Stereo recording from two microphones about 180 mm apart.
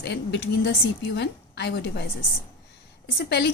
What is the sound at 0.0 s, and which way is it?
A woman's voice, 70° left (ahead or behind).